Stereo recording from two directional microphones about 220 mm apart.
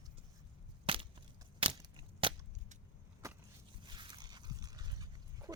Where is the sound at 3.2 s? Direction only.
15° right (ahead or behind).